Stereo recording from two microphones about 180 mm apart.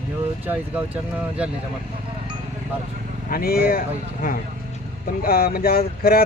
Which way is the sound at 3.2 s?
55° left (ahead or behind).